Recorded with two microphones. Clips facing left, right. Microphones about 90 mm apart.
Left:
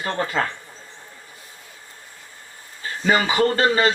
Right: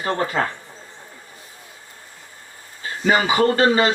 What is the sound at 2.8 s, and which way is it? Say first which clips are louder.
Speech: right 1 dB; 30° right (ahead or behind).